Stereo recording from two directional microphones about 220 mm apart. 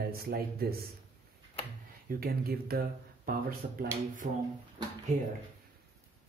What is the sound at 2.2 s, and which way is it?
Speech, 45° right (ahead or behind).